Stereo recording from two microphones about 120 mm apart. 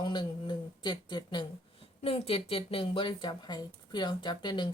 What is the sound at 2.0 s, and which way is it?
Speech, 50° left (ahead or behind).